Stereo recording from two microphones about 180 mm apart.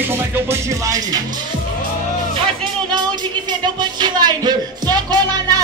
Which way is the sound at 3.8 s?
25° right (ahead or behind).